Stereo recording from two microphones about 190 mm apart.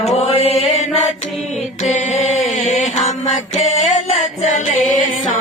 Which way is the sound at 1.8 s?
40° left (ahead or behind).